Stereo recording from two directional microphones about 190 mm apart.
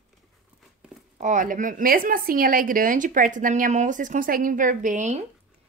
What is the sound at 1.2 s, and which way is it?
A woman's voice, 40° right (ahead or behind).